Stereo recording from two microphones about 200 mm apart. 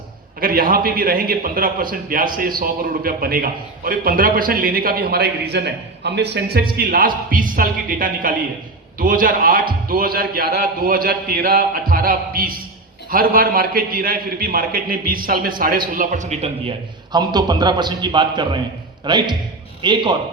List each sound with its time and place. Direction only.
0.3 s a man's voice: 45° right (ahead or behind); by 20.1 s 25° right (ahead or behind)